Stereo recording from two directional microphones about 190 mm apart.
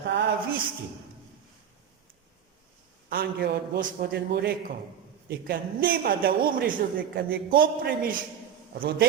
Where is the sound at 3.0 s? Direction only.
55° right (ahead or behind).